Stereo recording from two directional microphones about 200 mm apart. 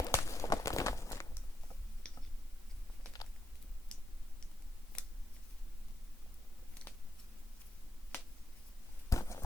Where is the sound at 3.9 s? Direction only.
5° left (ahead or behind).